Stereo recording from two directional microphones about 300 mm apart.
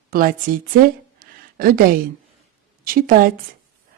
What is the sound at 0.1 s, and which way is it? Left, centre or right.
Speech, right.